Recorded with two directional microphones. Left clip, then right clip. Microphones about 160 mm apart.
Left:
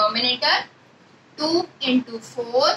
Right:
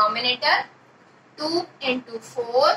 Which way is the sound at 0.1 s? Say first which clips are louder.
Left 1 dB; 20° left (ahead or behind).